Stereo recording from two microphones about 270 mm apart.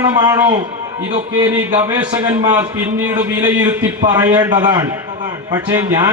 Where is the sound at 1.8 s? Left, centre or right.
Centre.